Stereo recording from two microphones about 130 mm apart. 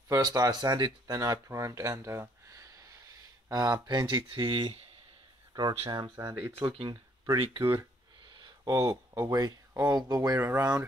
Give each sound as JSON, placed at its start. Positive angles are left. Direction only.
{"t": 0.1, "sound": "speech", "side_deg": -25}